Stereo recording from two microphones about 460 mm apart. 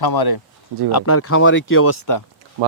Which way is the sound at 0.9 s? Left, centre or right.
Left.